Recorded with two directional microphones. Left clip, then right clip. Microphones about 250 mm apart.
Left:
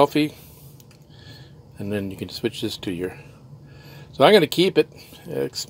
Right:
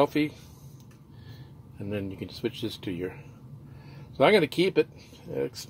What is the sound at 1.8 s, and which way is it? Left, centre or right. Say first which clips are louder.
Speech: left 6 dB; centre.